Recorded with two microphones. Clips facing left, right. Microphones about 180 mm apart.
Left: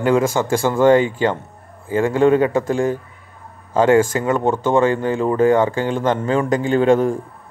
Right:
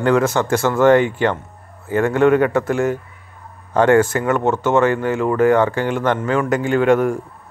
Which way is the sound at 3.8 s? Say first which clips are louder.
Even; 10° left (ahead or behind).